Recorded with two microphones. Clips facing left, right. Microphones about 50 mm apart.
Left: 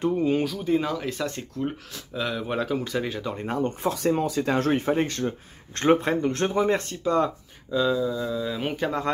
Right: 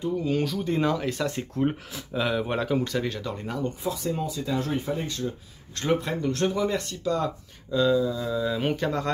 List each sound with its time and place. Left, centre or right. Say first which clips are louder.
0.4 s speech: left 1 dB; centre
3.3 s speech: left 4 dB; left
3.9 s speech: left 6 dB; left
5.8 s speech: left 5 dB; left
7.7 s speech: right 1 dB; centre